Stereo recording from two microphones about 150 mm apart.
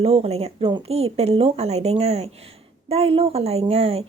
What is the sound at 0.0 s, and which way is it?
A woman's voice, 40° right (ahead or behind).